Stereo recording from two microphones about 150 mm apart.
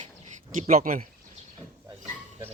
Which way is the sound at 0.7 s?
70° right (ahead or behind).